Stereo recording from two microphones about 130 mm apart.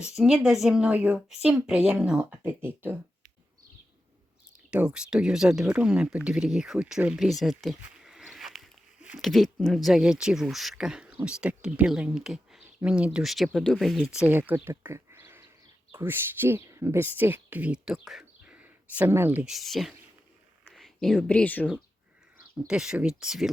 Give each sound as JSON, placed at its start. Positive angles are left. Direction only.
{"t": 0.0, "sound": "speech", "side_deg": -5}
{"t": 4.5, "sound": "speech", "side_deg": -10}
{"t": 8.0, "sound": "a sound", "side_deg": -5}
{"t": 9.1, "sound": "speech", "side_deg": 0}
{"t": 19.5, "sound": "speech", "side_deg": 0}
{"t": 22.5, "sound": "speech", "side_deg": -5}